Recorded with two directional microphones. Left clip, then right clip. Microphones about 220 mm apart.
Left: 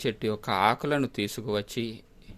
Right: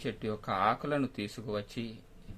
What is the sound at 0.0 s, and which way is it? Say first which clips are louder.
Speech: left 7 dB; 45° left (ahead or behind).